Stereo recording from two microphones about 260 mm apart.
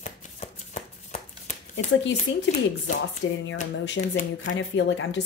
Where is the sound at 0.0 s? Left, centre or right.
Left.